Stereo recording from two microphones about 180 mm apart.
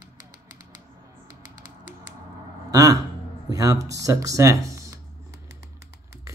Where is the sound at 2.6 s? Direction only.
20° right (ahead or behind).